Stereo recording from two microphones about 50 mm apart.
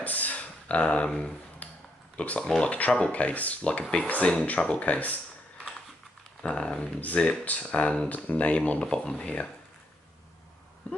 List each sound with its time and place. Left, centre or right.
0.0 s a sound: left
2.1 s speech: left
4.3 s speech: centre
4.7 s speech: left
6.4 s speech: left
8.9 s speech: centre